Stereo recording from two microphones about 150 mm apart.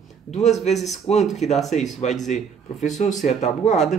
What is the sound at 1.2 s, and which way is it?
Speech, centre (ahead or behind).